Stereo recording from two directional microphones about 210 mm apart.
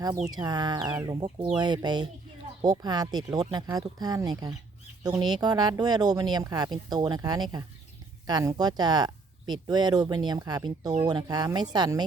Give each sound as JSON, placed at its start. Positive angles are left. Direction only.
{"t": 0.3, "sound": "speech", "side_deg": -20}